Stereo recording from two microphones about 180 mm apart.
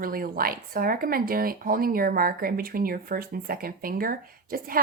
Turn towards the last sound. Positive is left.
turn(degrees=-55)  # may be behind; listen again after turning